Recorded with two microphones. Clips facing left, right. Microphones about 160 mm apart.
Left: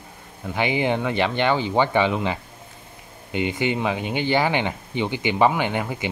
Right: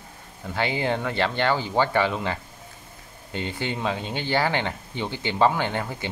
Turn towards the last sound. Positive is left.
turn(degrees=15)  # may be behind; listen again after turning